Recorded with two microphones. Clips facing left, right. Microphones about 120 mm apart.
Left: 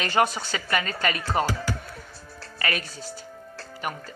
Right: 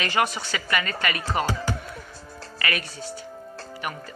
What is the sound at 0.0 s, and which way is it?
Speech, 40° left (ahead or behind).